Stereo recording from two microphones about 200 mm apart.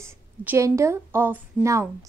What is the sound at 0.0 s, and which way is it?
A woman's voice, 10° right (ahead or behind).